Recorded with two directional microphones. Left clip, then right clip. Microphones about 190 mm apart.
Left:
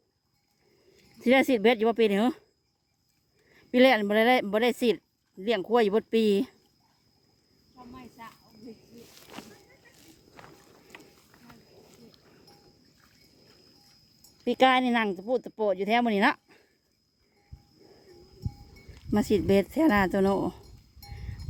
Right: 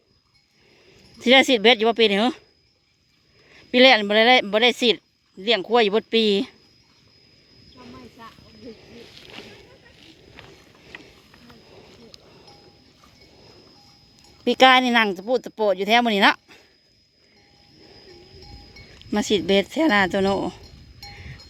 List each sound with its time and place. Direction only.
1.2 s speech: 10° left (ahead or behind)
3.5 s speech: 10° left (ahead or behind)
9.1 s a sound: 35° left (ahead or behind)
14.4 s speech: 5° left (ahead or behind)
19.1 s speech: 15° left (ahead or behind)
21.1 s cowbell: 10° left (ahead or behind)